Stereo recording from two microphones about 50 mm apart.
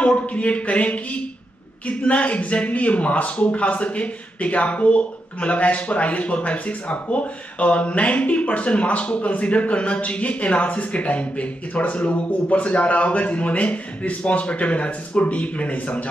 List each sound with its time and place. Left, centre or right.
0.0 s speech: left